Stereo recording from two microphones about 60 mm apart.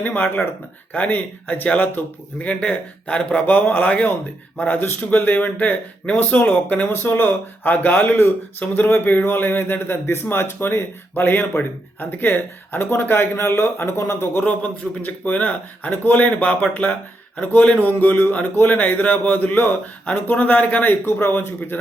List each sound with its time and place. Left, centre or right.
0.0 s speech: left
3.4 s a man's voice: left
6.8 s a man's voice: left
14.4 s speech: left
20.8 s a man's voice: left